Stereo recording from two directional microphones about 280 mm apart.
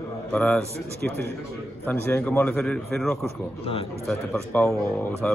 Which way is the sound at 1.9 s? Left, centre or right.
Centre.